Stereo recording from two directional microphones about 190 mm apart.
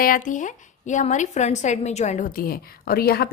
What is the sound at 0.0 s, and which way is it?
A woman's voice, 45° left (ahead or behind).